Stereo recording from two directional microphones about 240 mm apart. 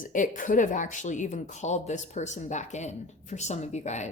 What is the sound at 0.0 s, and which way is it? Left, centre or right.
Speech, left.